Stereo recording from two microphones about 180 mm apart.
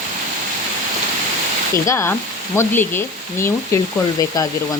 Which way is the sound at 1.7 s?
15° left (ahead or behind).